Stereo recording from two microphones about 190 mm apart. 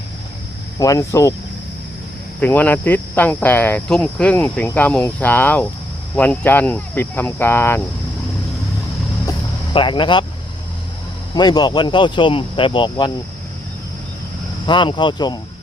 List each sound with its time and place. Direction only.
0.8 s speech: 20° left (ahead or behind)
2.4 s speech: 10° left (ahead or behind)
9.7 s speech: 25° left (ahead or behind)
11.3 s speech: 20° left (ahead or behind)
14.7 s speech: 25° left (ahead or behind)